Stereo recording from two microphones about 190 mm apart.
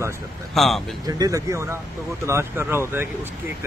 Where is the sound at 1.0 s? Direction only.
20° right (ahead or behind).